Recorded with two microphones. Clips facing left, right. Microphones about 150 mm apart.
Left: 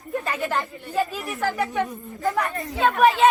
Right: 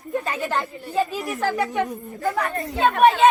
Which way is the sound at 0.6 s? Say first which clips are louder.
Right 1 dB; 20° right (ahead or behind).